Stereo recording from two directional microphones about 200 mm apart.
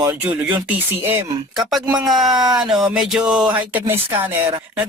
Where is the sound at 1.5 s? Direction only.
Centre (ahead or behind).